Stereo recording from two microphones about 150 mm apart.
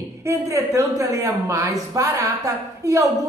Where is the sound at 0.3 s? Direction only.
20° right (ahead or behind).